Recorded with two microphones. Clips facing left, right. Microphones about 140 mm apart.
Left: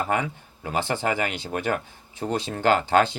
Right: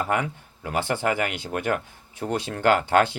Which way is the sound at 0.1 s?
55° right (ahead or behind).